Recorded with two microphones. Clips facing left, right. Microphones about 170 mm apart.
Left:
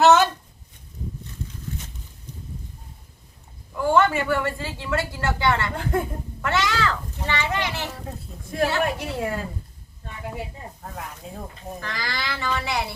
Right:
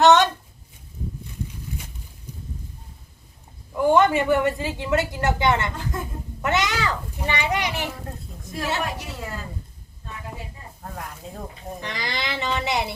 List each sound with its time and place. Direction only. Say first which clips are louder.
0.0 s a sound: even; centre (ahead or behind)
1.7 s boat: left 1 dB; 10° right (ahead or behind)
3.8 s a woman's voice: right 2 dB; 20° right (ahead or behind)
5.7 s a woman's voice: left 6 dB; 60° left (ahead or behind)
6.4 s a child's voice: even; 20° right (ahead or behind)
8.8 s a woman's voice: left 5 dB; 55° left (ahead or behind)
10.8 s speech: right 2 dB; 5° left (ahead or behind)
11.8 s a woman's voice: right 1 dB; 20° right (ahead or behind)